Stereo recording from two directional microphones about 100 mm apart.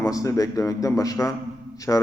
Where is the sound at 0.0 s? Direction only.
35° left (ahead or behind).